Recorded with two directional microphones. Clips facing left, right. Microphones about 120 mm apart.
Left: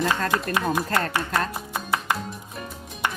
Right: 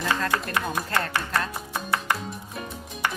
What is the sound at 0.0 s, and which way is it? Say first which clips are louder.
Speech: left 2 dB; 35° left (ahead or behind).